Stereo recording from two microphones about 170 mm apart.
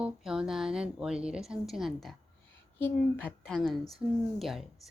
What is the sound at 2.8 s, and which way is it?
A woman's voice, 10° left (ahead or behind).